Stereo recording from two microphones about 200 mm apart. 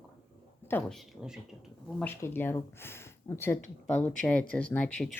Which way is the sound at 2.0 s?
10° left (ahead or behind).